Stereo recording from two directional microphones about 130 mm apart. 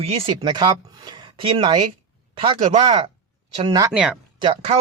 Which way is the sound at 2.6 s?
55° right (ahead or behind).